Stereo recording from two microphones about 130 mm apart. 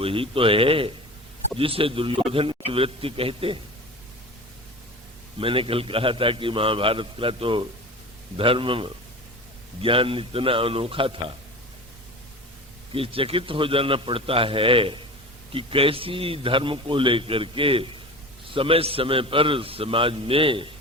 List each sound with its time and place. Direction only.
0.0 s a man's voice: 45° right (ahead or behind)
5.4 s a man's voice: 45° right (ahead or behind)
12.9 s a man's voice: 45° right (ahead or behind)